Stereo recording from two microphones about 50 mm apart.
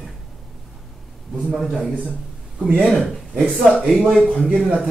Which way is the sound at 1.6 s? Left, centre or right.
Centre.